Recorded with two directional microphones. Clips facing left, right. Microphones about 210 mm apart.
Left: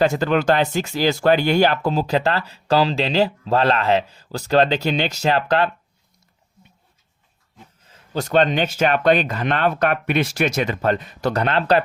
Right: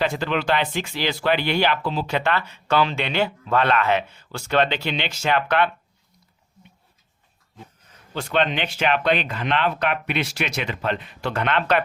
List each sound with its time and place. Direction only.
0.0 s speech: 45° left (ahead or behind)
8.1 s speech: 40° left (ahead or behind)